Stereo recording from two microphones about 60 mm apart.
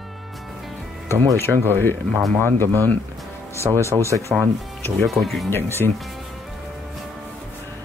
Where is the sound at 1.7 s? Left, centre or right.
Left.